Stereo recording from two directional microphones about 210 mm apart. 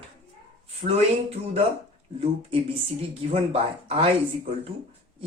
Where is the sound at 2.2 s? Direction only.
25° right (ahead or behind).